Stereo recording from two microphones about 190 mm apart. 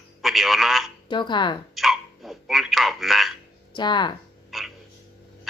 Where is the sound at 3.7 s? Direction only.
25° left (ahead or behind).